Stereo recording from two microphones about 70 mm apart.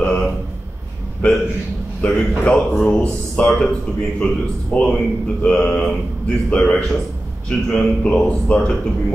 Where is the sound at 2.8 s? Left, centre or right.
Centre.